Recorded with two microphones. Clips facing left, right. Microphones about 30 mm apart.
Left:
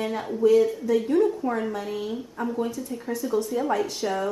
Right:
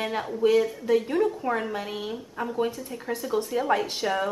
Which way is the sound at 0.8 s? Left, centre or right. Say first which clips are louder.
Left 2 dB; right.